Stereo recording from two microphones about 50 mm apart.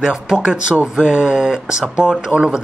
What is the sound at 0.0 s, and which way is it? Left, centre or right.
Speech, centre.